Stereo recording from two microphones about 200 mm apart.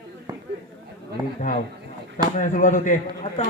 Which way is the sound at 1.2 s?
20° right (ahead or behind).